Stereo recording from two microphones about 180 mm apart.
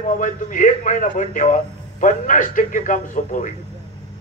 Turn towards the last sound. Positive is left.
turn(degrees=45)  # may be behind; listen again after turning